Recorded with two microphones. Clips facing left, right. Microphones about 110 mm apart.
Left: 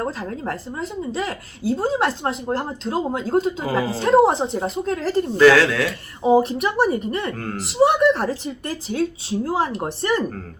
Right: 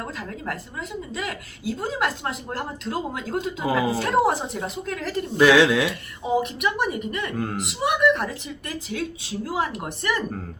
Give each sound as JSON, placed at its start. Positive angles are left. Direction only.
{"t": 0.0, "sound": "a woman's voice", "side_deg": 35}
{"t": 5.4, "sound": "speech", "side_deg": -15}
{"t": 6.2, "sound": "a woman's voice", "side_deg": 35}
{"t": 7.3, "sound": "speech", "side_deg": -10}
{"t": 7.6, "sound": "a woman's voice", "side_deg": 30}